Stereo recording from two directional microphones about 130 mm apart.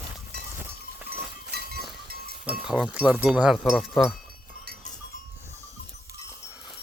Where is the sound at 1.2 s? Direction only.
Centre (ahead or behind).